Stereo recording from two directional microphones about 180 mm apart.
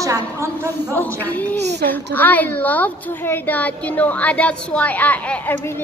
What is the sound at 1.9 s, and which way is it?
A woman's voice, 10° left (ahead or behind).